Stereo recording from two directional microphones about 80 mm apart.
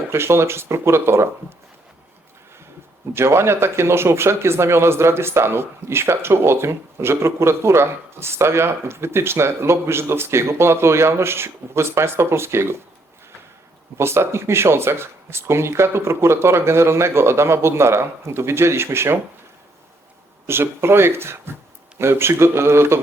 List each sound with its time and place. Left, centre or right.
0.1 s speech: right
3.2 s speech: right
14.0 s speech: right
20.5 s speech: right